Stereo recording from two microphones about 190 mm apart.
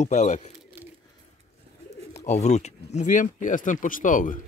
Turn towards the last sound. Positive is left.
turn(degrees=45)  # may be behind; listen again after turning